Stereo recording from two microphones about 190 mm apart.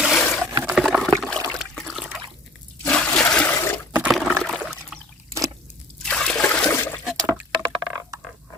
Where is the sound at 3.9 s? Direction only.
5° right (ahead or behind).